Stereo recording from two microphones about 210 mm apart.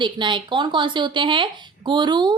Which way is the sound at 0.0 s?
20° right (ahead or behind).